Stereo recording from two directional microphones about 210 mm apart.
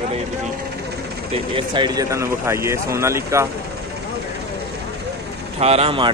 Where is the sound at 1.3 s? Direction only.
25° right (ahead or behind).